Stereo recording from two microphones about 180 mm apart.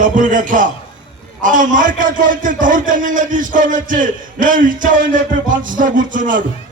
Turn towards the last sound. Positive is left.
turn(degrees=-45)  # may be behind; listen again after turning